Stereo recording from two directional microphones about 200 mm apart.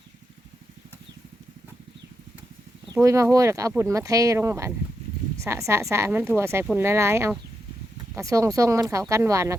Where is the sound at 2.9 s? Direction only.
15° right (ahead or behind).